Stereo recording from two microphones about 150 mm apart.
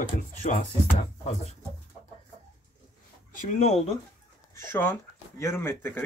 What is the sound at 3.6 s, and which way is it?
Speech, 45° left (ahead or behind).